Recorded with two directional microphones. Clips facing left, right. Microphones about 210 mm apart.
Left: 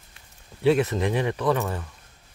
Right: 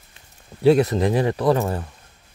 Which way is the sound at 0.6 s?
40° right (ahead or behind).